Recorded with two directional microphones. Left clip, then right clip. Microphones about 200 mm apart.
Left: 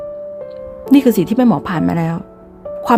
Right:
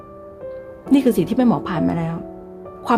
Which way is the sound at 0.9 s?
15° left (ahead or behind).